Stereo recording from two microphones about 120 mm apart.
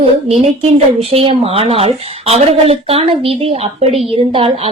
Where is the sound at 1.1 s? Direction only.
50° right (ahead or behind).